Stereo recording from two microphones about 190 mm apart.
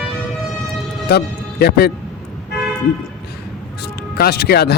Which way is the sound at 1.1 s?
55° left (ahead or behind).